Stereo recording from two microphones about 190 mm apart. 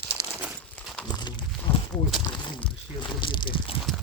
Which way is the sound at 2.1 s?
Centre (ahead or behind).